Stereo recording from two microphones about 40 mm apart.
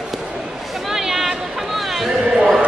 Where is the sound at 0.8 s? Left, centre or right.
Centre.